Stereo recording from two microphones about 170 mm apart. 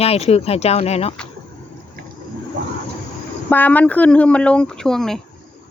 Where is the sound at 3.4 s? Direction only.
10° left (ahead or behind).